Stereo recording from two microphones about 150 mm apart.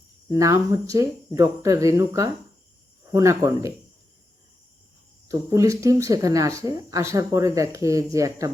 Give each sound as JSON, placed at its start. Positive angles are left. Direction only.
{"t": 0.3, "sound": "speech", "side_deg": -20}
{"t": 5.3, "sound": "speech", "side_deg": -20}